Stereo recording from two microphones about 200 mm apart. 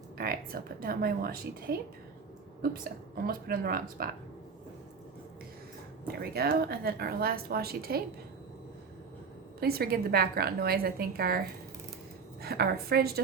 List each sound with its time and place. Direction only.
0.2 s a woman's voice: 45° right (ahead or behind)
3.2 s a woman's voice: 50° right (ahead or behind)
6.1 s a woman's voice: 50° right (ahead or behind)
9.6 s a woman's voice: 50° right (ahead or behind)